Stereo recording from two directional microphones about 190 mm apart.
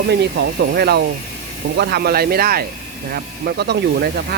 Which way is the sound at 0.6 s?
60° right (ahead or behind).